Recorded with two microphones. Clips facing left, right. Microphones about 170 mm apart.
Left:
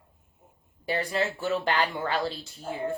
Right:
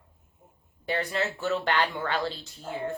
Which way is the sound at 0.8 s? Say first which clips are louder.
Left 1 dB; 10° left (ahead or behind).